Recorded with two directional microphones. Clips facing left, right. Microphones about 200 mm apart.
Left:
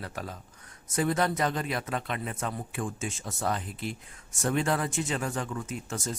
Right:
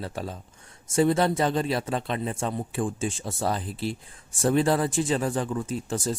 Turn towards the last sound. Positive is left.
turn(degrees=-30)  # may be behind; listen again after turning